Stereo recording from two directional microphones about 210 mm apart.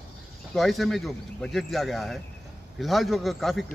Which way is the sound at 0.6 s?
Centre (ahead or behind).